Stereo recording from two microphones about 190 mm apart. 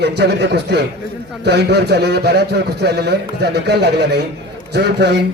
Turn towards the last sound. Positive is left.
turn(degrees=-60)  # may be behind; listen again after turning